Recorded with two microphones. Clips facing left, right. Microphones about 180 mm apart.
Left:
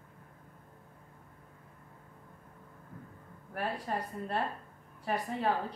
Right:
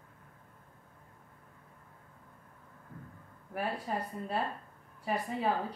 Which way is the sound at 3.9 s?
5° right (ahead or behind).